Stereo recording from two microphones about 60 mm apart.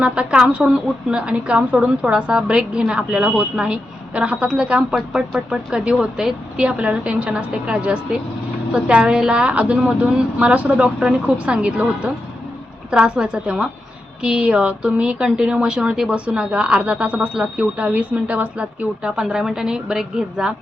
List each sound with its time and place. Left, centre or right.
0.0 s a woman's voice: centre